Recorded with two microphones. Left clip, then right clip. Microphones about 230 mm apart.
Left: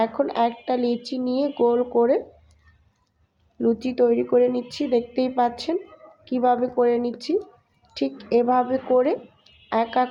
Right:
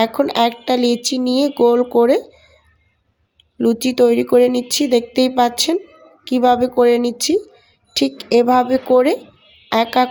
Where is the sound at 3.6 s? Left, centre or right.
Right.